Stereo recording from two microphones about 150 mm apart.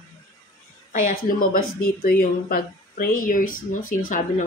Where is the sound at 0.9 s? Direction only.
65° left (ahead or behind).